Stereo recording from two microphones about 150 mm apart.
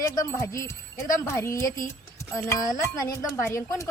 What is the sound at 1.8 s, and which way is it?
Music, 20° left (ahead or behind).